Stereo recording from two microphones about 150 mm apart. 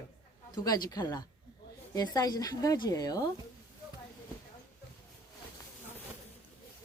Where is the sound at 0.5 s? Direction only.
25° left (ahead or behind).